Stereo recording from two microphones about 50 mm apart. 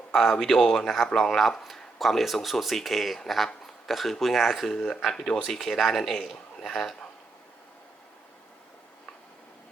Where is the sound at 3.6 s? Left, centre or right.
Centre.